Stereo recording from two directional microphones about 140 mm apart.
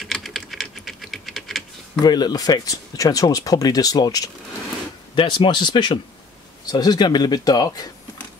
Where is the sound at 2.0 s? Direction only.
30° left (ahead or behind).